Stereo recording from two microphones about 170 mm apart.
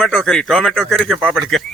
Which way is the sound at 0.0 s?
Centre (ahead or behind).